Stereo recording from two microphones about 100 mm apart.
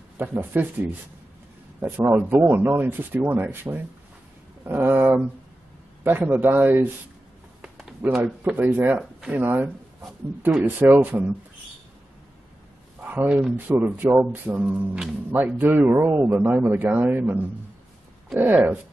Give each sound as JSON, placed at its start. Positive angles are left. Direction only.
{"t": 0.2, "sound": "a man's voice", "side_deg": -20}
{"t": 7.6, "sound": "a sound", "side_deg": -5}
{"t": 8.7, "sound": "a man's voice", "side_deg": -20}
{"t": 13.0, "sound": "a man's voice", "side_deg": -15}